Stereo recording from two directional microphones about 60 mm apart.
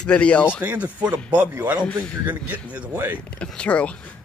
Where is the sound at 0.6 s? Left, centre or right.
Right.